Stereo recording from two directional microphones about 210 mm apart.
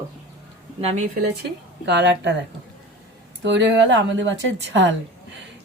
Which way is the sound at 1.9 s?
55° right (ahead or behind).